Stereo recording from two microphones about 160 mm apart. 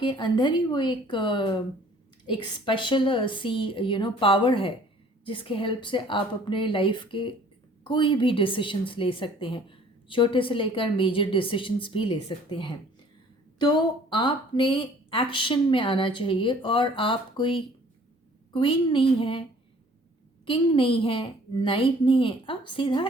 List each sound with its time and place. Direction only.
0.0 s a woman's voice: 30° left (ahead or behind)
20.4 s a woman's voice: 35° left (ahead or behind)